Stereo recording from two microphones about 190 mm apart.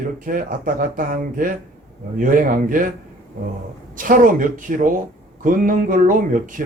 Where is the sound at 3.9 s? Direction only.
45° right (ahead or behind).